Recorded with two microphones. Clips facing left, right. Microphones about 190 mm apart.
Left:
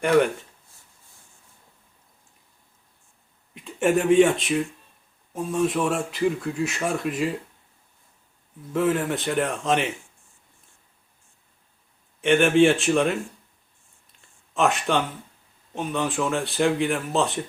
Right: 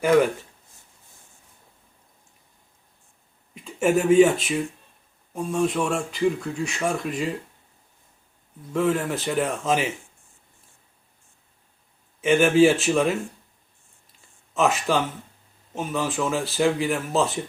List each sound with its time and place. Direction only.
0.0 s speech: centre (ahead or behind)
3.5 s speech: centre (ahead or behind)
8.7 s speech: centre (ahead or behind)
12.2 s speech: centre (ahead or behind)
14.5 s speech: centre (ahead or behind)